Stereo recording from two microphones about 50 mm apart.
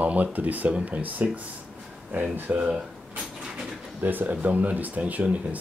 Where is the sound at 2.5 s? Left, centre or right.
Right.